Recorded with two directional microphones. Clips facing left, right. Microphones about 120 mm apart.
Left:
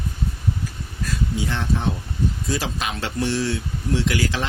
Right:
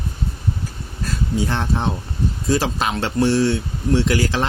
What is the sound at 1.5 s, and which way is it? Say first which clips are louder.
Speech: right 2 dB; 40° right (ahead or behind).